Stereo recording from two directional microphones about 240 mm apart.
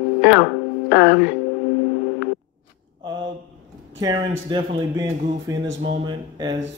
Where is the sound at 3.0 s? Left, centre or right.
Centre.